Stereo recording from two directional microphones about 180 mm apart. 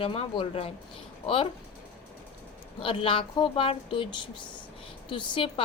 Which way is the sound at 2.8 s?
30° left (ahead or behind).